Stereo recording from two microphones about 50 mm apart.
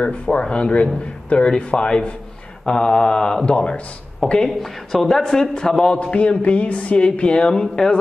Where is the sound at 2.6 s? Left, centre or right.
Centre.